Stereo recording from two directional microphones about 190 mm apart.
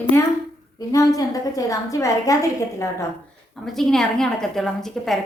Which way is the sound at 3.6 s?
Centre (ahead or behind).